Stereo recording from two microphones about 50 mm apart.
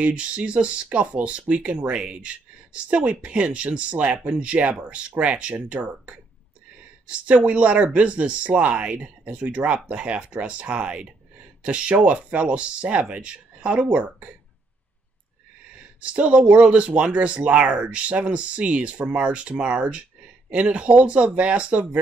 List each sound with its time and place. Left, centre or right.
0.0 s speech: right
16.0 s speech: right